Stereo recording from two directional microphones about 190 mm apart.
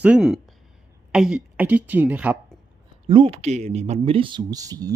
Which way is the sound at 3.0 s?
25° right (ahead or behind).